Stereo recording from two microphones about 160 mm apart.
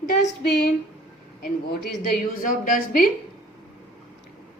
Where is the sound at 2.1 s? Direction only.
55° left (ahead or behind).